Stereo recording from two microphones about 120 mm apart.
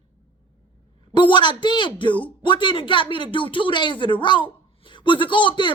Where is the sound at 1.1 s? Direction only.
40° left (ahead or behind).